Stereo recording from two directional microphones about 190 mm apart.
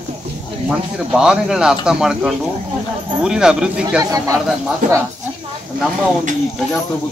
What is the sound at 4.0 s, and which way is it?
Speech, 15° right (ahead or behind).